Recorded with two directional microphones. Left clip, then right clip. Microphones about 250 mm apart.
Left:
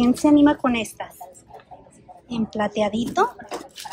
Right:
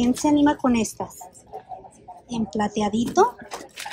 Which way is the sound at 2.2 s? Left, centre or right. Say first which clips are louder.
Left 1 dB; centre.